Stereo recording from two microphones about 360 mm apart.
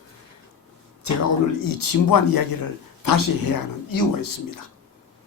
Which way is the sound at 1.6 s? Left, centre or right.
Left.